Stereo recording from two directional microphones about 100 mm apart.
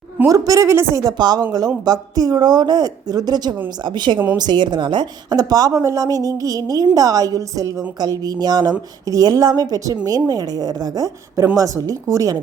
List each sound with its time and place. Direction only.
0.3 s a woman's voice: 35° right (ahead or behind)
1.0 s a woman's voice: 45° right (ahead or behind)